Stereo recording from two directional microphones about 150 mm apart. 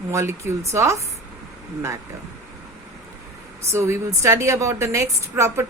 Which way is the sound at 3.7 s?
15° right (ahead or behind).